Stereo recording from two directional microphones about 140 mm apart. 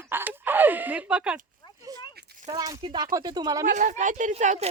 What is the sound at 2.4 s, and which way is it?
Speech, 30° right (ahead or behind).